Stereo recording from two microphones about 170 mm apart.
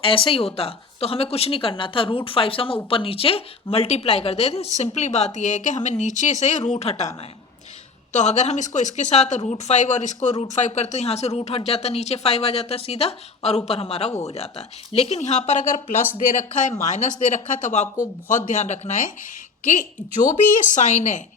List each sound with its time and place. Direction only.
0.0 s speech: 30° left (ahead or behind)
8.1 s speech: 45° left (ahead or behind)